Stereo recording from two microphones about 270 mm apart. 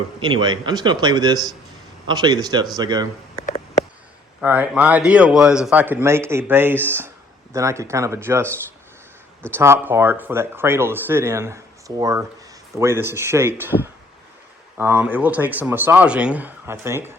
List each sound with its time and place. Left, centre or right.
0.2 s speech: centre
3.4 s a sound: left
4.4 s a man's voice: centre
9.6 s speech: centre